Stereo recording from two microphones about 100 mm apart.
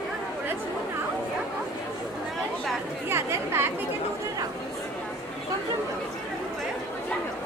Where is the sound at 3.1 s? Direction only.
25° right (ahead or behind).